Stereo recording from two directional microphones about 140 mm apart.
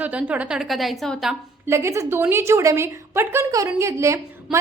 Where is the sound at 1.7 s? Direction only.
20° right (ahead or behind).